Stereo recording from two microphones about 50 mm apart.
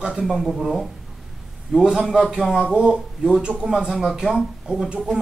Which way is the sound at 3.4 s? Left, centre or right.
Centre.